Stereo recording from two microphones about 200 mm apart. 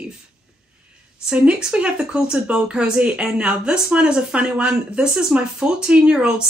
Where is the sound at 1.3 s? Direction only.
5° right (ahead or behind).